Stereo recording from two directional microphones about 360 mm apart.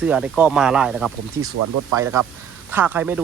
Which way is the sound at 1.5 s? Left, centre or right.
Right.